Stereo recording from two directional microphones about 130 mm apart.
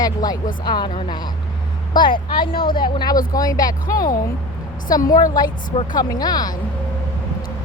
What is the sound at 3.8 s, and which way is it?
Speech, 90° left.